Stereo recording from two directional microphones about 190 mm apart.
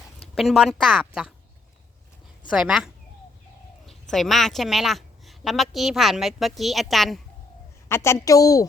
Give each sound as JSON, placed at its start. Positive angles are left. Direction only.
{"t": 0.3, "sound": "a woman's voice", "side_deg": 0}
{"t": 2.5, "sound": "a woman's voice", "side_deg": -5}
{"t": 4.1, "sound": "a woman's voice", "side_deg": 0}
{"t": 7.9, "sound": "a woman's voice", "side_deg": 15}